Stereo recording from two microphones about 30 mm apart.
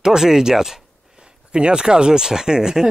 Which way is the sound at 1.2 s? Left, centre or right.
Right.